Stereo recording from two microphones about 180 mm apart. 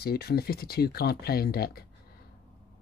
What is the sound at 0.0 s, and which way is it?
Speech, 60° left (ahead or behind).